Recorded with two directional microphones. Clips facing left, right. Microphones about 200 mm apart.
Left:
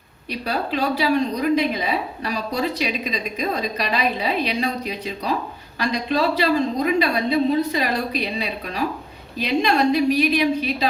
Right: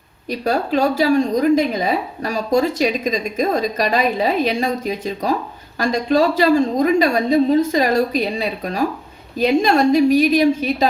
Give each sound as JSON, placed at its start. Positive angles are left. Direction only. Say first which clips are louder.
{"t": 0.3, "sound": "a woman's voice", "louder": "right 6 dB", "side_deg": -45}